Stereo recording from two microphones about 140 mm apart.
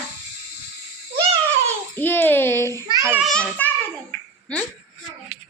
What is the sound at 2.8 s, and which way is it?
Speech, 25° right (ahead or behind).